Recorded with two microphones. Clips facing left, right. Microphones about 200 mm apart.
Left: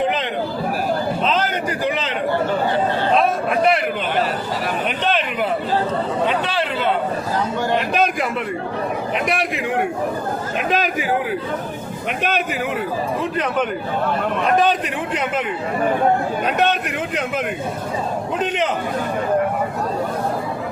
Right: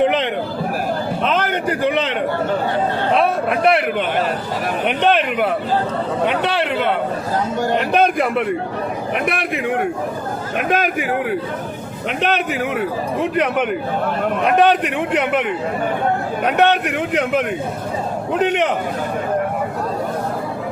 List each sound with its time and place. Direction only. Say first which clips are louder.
0.0 s chatter: right 4 dB; 60° right (ahead or behind)
1.2 s a sound: right 1 dB; 60° right (ahead or behind)
3.2 s a sound: right 1 dB; 65° right (ahead or behind)
4.9 s a man's voice: right 8 dB; 65° right (ahead or behind)
10.7 s a man's voice: right 2 dB; 55° right (ahead or behind)
12.2 s a man's voice: right 3 dB; 65° right (ahead or behind)
16.5 s a man's voice: right 6 dB; 65° right (ahead or behind)